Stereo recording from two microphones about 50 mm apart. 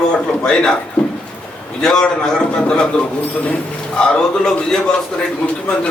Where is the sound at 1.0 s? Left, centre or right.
Centre.